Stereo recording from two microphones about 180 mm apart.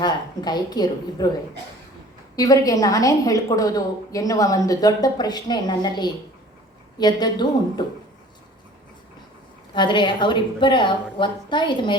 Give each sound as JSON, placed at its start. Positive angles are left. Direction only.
{"t": 0.0, "sound": "a woman's voice", "side_deg": 25}
{"t": 2.3, "sound": "a woman's voice", "side_deg": 20}
{"t": 7.0, "sound": "a woman's voice", "side_deg": 25}
{"t": 9.7, "sound": "a woman's voice", "side_deg": 25}